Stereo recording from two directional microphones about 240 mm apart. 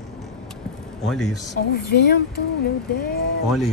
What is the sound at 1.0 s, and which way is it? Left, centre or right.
Speech, centre.